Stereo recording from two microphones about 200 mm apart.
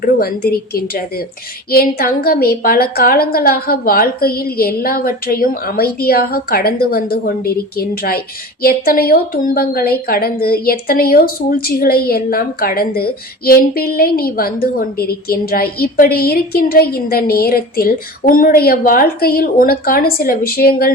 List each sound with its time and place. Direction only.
0.0 s a woman's voice: 50° left (ahead or behind)